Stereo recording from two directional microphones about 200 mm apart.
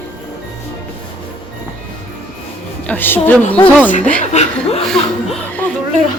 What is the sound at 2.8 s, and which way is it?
Speech, 10° left (ahead or behind).